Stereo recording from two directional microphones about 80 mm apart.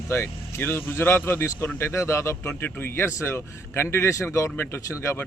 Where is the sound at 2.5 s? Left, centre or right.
Left.